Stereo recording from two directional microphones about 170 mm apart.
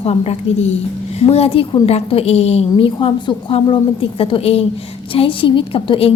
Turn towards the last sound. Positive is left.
turn(degrees=35)  # may be behind; listen again after turning